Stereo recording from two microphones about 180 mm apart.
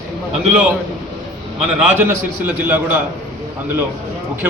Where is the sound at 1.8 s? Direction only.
10° right (ahead or behind).